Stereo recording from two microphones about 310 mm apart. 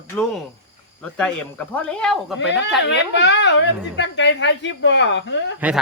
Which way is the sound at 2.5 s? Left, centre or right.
Left.